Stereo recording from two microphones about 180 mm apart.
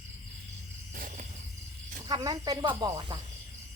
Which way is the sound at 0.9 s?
50° right (ahead or behind).